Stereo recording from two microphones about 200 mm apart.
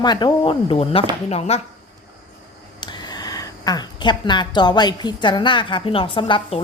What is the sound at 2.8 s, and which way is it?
Speech, 20° left (ahead or behind).